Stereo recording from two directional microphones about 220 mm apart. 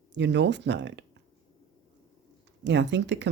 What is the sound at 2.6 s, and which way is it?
Speech, 50° right (ahead or behind).